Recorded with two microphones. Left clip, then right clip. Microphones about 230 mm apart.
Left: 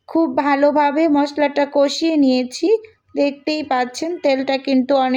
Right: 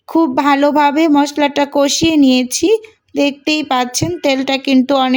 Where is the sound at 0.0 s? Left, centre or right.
Right.